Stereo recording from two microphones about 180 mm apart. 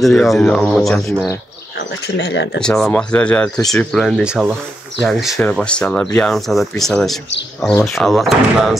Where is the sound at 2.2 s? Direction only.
70° left (ahead or behind).